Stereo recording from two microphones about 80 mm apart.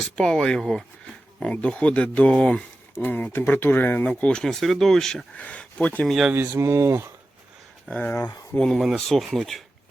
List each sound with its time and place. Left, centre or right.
0.0 s speech: centre
2.9 s speech: left; by 5.2 s centre
5.4 s speech: centre
6.1 s speech: centre
6.3 s speech: right
6.6 s speech: right
7.9 s speech: centre